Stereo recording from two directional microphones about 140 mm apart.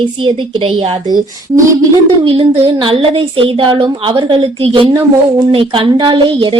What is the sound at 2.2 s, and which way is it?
A woman's voice, 40° right (ahead or behind).